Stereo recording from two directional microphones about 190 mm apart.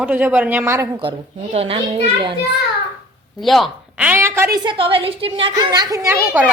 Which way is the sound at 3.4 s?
Centre (ahead or behind).